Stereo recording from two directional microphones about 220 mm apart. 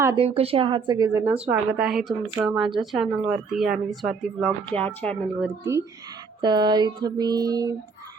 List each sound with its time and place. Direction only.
0.2 s speech: 25° right (ahead or behind); by 5.1 s 5° left (ahead or behind)
5.4 s speech: 15° right (ahead or behind)